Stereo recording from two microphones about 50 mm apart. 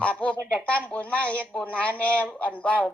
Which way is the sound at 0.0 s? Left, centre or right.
Left.